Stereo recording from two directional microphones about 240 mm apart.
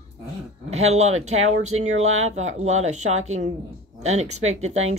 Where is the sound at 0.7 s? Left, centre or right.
Right.